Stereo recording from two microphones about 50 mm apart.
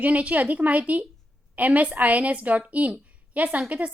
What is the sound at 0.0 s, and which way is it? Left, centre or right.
A woman's voice, right.